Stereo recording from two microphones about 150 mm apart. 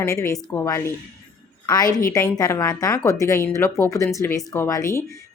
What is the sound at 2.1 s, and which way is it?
A woman's voice, 20° left (ahead or behind).